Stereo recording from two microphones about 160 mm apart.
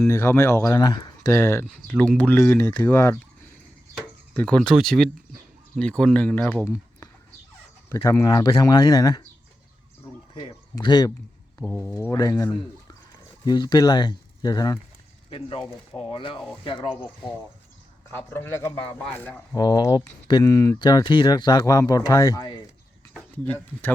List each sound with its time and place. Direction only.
0.1 s speech: 15° left (ahead or behind)
4.4 s speech: 5° left (ahead or behind); by 9.2 s 25° left (ahead or behind)
10.5 s a sound: 25° left (ahead or behind)
11.5 s speech: 15° left (ahead or behind)
15.3 s speech: 35° left (ahead or behind)
18.1 s speech: 10° left (ahead or behind)
19.5 s speech: 25° left (ahead or behind)
23.1 s speech: 10° left (ahead or behind)